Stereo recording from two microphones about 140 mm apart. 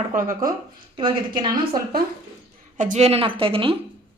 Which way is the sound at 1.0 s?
35° right (ahead or behind).